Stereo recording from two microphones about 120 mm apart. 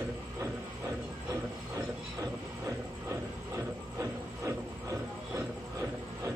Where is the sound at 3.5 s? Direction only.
25° right (ahead or behind).